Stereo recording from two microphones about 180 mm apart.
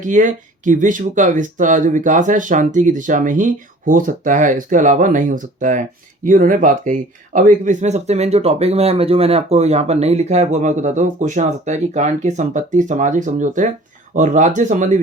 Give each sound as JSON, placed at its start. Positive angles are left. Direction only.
{"t": 0.0, "sound": "speech", "side_deg": -45}